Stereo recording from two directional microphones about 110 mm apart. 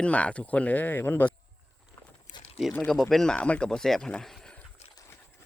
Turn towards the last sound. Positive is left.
turn(degrees=5)  # may be behind; listen again after turning